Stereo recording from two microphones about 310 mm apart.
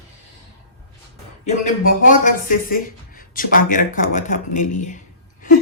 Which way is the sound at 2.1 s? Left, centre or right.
Left.